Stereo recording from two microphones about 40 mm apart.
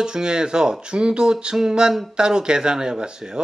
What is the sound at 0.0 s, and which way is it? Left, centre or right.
Speech, centre.